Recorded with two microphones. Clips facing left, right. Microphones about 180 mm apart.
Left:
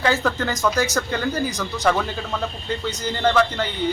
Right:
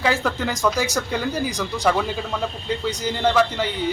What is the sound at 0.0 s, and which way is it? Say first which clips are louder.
A man's voice: left 1 dB; 5° right (ahead or behind).